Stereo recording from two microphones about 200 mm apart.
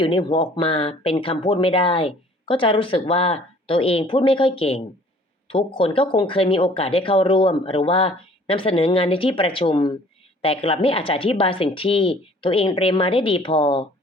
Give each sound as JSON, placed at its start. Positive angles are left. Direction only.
{"t": 0.0, "sound": "speech", "side_deg": 25}